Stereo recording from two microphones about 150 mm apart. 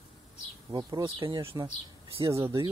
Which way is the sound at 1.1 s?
35° right (ahead or behind).